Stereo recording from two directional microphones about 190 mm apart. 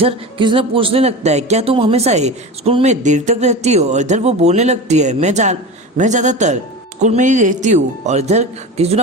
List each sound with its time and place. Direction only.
0.0 s speech: 25° right (ahead or behind)